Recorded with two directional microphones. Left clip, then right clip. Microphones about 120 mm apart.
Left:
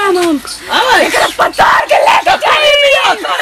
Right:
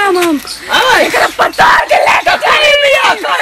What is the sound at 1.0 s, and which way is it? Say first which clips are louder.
Music: even; 5° left (ahead or behind).